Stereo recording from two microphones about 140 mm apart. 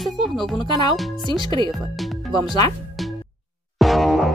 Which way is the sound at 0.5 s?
30° left (ahead or behind).